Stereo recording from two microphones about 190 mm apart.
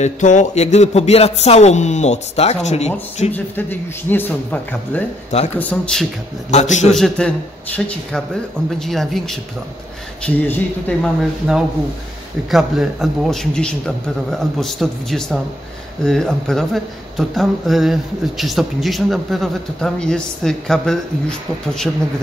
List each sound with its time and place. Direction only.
0.0 s speech: 40° left (ahead or behind)
4.1 s speech: 10° left (ahead or behind)
6.5 s speech: 40° left (ahead or behind)
6.9 s speech: 5° left (ahead or behind)